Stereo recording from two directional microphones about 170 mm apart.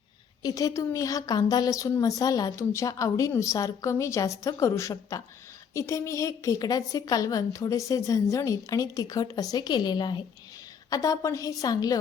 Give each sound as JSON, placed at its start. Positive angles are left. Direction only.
{"t": 0.4, "sound": "a woman's voice", "side_deg": 20}